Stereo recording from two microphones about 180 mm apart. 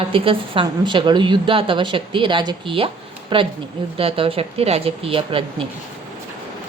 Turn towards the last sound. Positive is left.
turn(degrees=-30)  # may be behind; listen again after turning